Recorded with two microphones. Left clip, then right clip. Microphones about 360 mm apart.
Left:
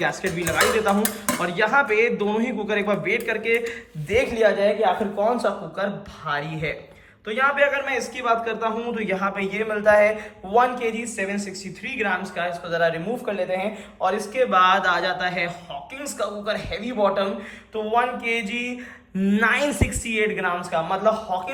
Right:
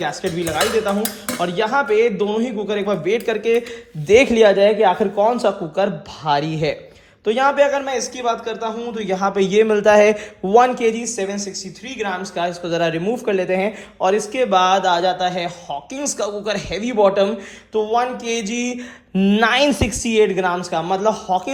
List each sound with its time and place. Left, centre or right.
0.0 s cutlery: centre
7.3 s cutlery: centre